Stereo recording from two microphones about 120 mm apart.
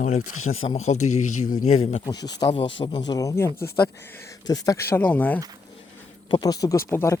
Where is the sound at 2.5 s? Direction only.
50° left (ahead or behind).